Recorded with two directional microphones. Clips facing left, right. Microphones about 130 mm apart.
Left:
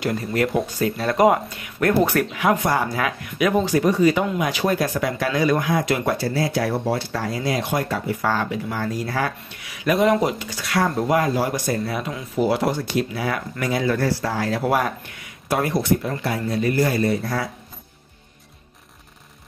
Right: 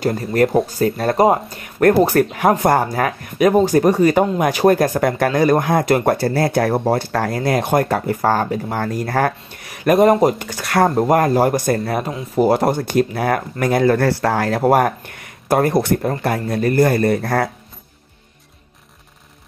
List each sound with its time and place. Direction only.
0.0 s speech: 40° right (ahead or behind); by 14.6 s 60° right (ahead or behind)
14.6 s speech: 50° right (ahead or behind)